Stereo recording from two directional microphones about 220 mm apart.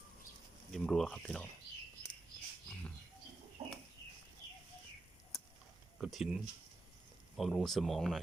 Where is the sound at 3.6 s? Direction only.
30° right (ahead or behind).